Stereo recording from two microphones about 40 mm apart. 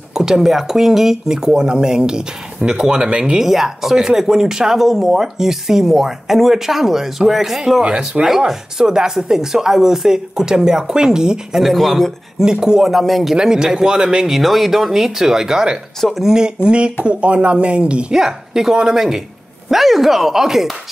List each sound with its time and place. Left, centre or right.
0.1 s speech: centre
3.3 s speech: centre
7.8 s speech: centre
11.6 s speech: centre
12.4 s speech: centre
12.9 s speech: centre
13.4 s speech: centre
14.3 s speech: centre
16.6 s speech: right
18.1 s speech: centre